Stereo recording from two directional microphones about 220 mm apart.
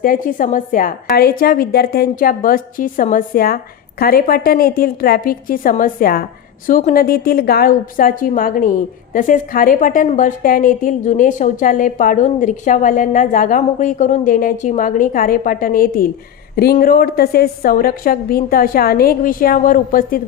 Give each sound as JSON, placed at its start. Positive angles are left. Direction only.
{"t": 0.0, "sound": "a woman's voice", "side_deg": 40}